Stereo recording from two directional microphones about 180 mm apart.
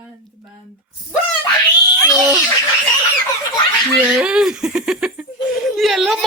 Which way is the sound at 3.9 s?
5° right (ahead or behind).